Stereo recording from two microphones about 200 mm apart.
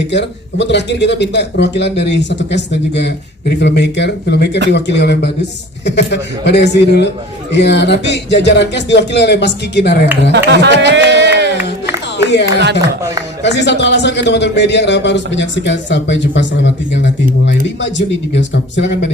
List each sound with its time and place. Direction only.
0.1 s a man's voice: 60° left (ahead or behind)
10.3 s speech: 60° right (ahead or behind)
12.2 s a man's voice: 60° left (ahead or behind)